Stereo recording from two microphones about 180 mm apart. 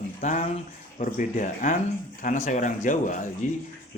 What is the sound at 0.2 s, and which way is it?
A man's voice, 45° left (ahead or behind).